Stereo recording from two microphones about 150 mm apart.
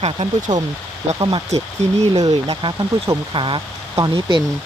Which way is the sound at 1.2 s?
35° right (ahead or behind).